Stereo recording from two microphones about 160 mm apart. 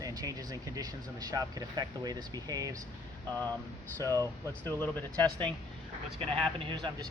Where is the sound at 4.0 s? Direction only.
20° right (ahead or behind).